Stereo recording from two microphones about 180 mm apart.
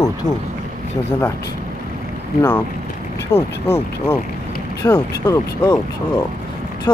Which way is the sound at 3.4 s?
10° left (ahead or behind).